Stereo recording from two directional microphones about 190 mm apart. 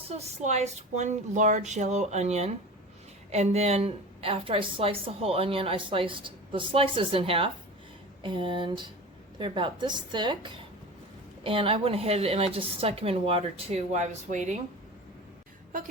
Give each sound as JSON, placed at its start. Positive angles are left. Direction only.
{"t": 0.1, "sound": "a woman's voice", "side_deg": -35}